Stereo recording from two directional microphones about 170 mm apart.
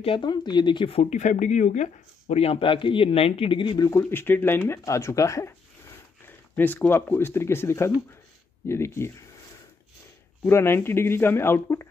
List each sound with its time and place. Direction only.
0.0 s speech: 30° left (ahead or behind)
1.1 s speech: 45° left (ahead or behind); by 9.1 s 15° left (ahead or behind)
10.4 s speech: 15° left (ahead or behind)